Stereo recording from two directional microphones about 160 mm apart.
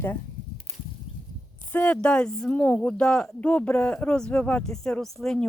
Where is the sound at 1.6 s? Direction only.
10° left (ahead or behind).